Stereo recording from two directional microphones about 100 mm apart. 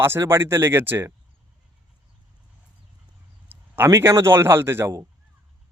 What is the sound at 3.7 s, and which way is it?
Speech, 25° right (ahead or behind).